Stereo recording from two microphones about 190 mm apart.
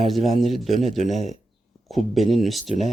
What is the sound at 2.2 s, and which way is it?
Speech, centre (ahead or behind).